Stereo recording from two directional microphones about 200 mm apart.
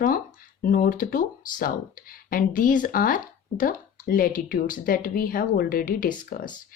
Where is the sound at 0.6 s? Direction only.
45° left (ahead or behind).